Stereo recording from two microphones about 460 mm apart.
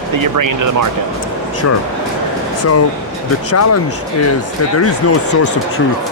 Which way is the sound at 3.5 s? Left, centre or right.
Left.